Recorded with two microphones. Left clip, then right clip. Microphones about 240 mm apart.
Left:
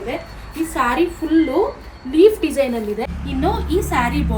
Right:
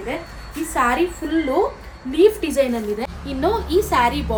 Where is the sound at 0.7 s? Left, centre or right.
Centre.